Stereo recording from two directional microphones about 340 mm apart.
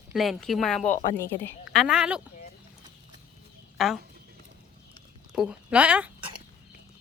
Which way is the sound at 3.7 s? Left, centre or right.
Centre.